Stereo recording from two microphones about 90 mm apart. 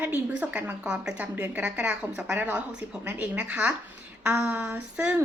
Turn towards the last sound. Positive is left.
turn(degrees=-10)  # may be behind; listen again after turning